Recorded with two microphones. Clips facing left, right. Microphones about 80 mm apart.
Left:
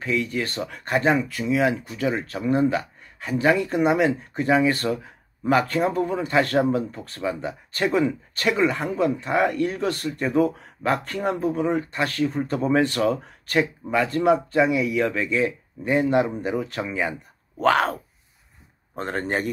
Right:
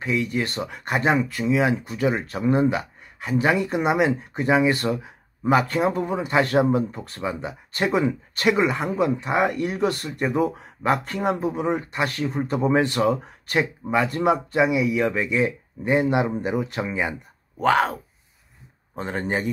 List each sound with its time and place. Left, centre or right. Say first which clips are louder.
0.0 s a man's voice: right 1 dB; right
2.7 s a man's voice: left 1 dB; centre
17.6 s speech: even; centre
18.9 s speech: even; centre